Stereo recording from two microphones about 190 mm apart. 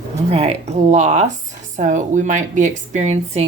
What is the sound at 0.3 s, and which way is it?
Speech, 30° right (ahead or behind).